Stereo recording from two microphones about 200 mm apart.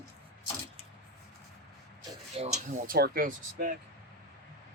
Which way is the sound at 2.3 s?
30° right (ahead or behind).